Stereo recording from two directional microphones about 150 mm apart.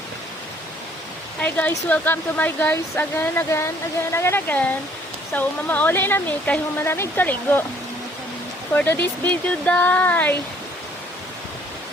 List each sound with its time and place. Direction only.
1.4 s speech: 10° left (ahead or behind)
8.7 s speech: 10° left (ahead or behind)